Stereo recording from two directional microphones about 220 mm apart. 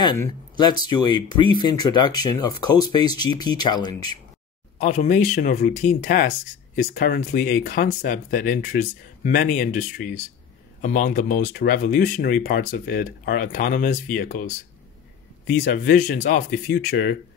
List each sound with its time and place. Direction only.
0.0 s speech: 20° left (ahead or behind)
4.7 s speech: 35° left (ahead or behind)
15.6 s speech: 40° left (ahead or behind)